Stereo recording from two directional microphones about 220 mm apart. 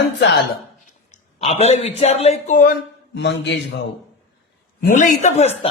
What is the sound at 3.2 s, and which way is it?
Speech, 55° left (ahead or behind).